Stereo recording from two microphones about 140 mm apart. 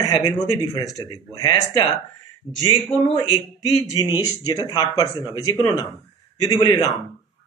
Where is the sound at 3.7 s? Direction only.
25° left (ahead or behind).